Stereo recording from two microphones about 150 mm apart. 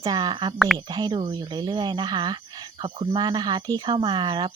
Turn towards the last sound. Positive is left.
turn(degrees=-30)  # may be behind; listen again after turning